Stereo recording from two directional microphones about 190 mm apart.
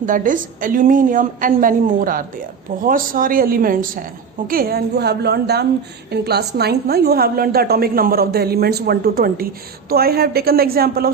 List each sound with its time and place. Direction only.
0.0 s a woman's voice: 45° right (ahead or behind)